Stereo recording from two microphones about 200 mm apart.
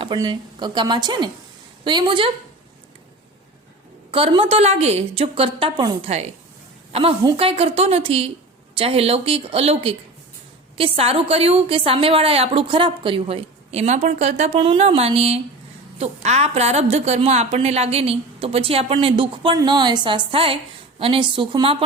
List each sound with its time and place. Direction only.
0.0 s a woman's voice: 25° right (ahead or behind)
4.1 s a woman's voice: 25° right (ahead or behind)